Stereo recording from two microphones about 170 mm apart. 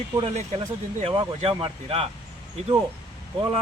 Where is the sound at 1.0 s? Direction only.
30° right (ahead or behind).